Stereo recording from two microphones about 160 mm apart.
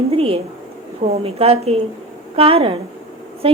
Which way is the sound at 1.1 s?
40° right (ahead or behind).